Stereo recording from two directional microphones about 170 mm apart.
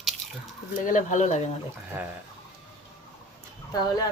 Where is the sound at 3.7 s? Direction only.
20° left (ahead or behind).